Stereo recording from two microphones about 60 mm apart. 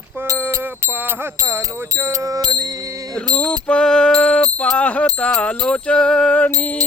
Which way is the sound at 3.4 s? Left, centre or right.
Left.